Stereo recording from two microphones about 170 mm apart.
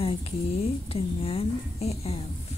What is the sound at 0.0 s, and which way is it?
A woman's voice, 35° left (ahead or behind).